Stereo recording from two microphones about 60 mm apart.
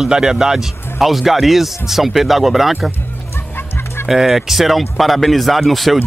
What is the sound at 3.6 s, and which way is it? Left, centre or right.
Fowl, left.